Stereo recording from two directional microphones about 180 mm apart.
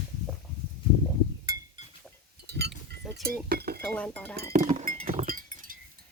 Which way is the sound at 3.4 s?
60° right (ahead or behind).